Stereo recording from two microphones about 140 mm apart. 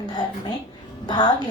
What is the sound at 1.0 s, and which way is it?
Speech, 30° left (ahead or behind).